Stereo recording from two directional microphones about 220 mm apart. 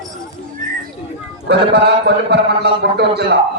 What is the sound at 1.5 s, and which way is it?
A man's voice, 50° right (ahead or behind).